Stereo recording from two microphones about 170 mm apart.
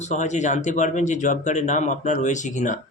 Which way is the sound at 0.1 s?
45° left (ahead or behind).